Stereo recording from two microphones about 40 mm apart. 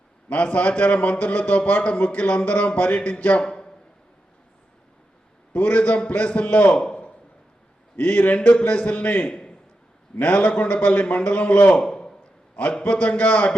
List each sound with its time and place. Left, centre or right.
0.3 s a man's voice: left
3.4 s a sound: left
5.5 s a man's voice: left
7.9 s a man's voice: left
9.2 s a man's voice: centre
10.2 s a man's voice: left
11.9 s a sound: centre
12.8 s a man's voice: left